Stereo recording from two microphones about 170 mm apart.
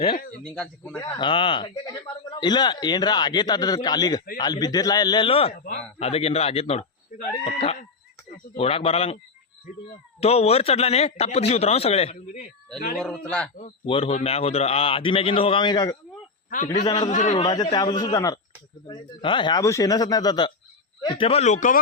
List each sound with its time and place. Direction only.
0.4 s a man's voice: 5° left (ahead or behind)
0.9 s a man's voice: 30° left (ahead or behind)
10.2 s a man's voice: 35° left (ahead or behind)
13.0 s a man's voice: 5° left (ahead or behind)
13.8 s a man's voice: 35° left (ahead or behind)
17.1 s a man's voice: 45° left (ahead or behind)
17.3 s a man's voice: 25° left (ahead or behind); by 21.8 s 45° left (ahead or behind)